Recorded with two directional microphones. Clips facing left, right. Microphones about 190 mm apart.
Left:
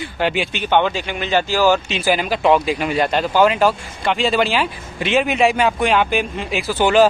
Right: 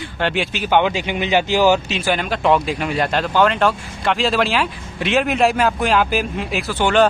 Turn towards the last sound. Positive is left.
turn(degrees=5)  # may be behind; listen again after turning